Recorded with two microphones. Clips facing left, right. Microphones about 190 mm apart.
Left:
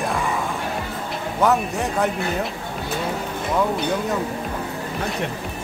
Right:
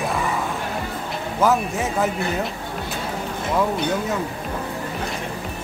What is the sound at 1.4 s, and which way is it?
Speech, centre (ahead or behind).